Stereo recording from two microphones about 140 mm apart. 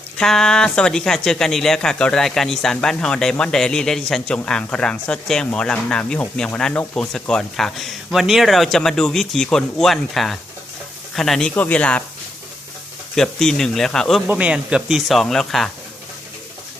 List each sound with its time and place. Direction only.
0.2 s speech: 5° left (ahead or behind)
13.1 s speech: 5° left (ahead or behind)
14.3 s speech: 10° right (ahead or behind)